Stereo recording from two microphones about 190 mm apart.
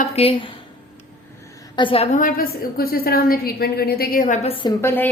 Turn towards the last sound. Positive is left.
turn(degrees=10)  # may be behind; listen again after turning